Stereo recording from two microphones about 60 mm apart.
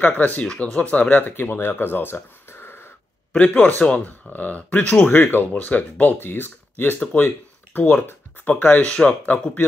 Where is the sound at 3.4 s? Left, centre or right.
Left.